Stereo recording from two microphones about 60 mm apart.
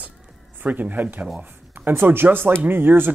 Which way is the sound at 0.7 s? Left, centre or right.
Right.